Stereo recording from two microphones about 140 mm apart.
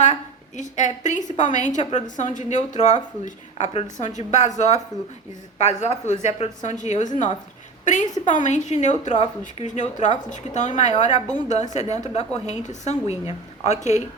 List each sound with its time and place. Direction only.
0.0 s a woman's voice: 60° left (ahead or behind)
8.4 s a woman's voice: 60° left (ahead or behind)